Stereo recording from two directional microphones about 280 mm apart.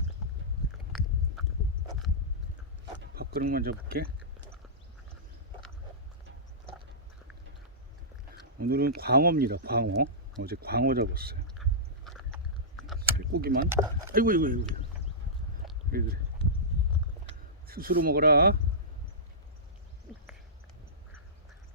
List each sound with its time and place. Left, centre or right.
3.0 s speech: right
8.6 s speech: right
11.5 s chewing: centre
13.0 s a sound: right
14.1 s speech: right
15.9 s speech: right
17.7 s speech: right